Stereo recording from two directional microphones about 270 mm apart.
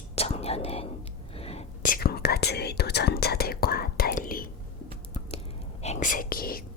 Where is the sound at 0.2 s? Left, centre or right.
Left.